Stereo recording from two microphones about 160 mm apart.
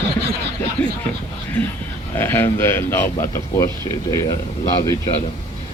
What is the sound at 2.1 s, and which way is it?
A man's voice, 15° left (ahead or behind).